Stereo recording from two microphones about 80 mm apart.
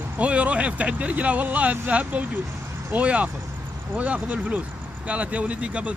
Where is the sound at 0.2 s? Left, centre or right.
Centre.